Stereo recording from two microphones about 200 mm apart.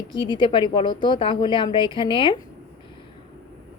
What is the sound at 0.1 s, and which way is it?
Speech, 25° left (ahead or behind).